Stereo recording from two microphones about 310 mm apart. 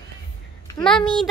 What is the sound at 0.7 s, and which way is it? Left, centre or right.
Speech, centre.